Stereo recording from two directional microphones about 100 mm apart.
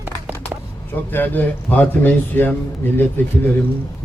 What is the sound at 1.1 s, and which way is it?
Speech, 20° left (ahead or behind).